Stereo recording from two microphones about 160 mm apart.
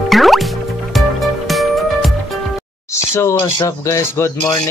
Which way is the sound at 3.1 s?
15° left (ahead or behind).